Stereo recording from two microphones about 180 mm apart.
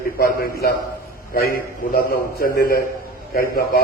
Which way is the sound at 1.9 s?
55° left (ahead or behind).